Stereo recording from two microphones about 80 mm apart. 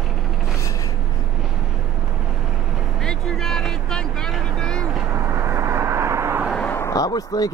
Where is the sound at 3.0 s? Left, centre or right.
Centre.